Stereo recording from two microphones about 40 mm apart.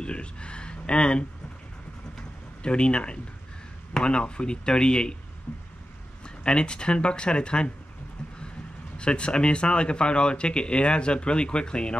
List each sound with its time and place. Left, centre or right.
0.0 s speech: left
2.6 s a man's voice: left
6.2 s a man's voice: left
8.9 s a man's voice: left